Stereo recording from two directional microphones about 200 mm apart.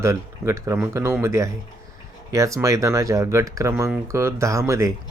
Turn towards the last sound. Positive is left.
turn(degrees=-15)  # may be behind; listen again after turning